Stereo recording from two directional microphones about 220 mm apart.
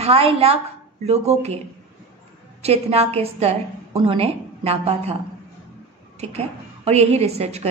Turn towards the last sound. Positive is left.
turn(degrees=-30)  # may be behind; listen again after turning